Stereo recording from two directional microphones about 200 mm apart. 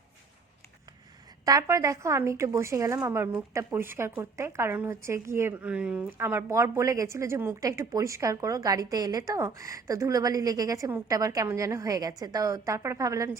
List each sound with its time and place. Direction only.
1.5 s a woman's voice: 15° right (ahead or behind)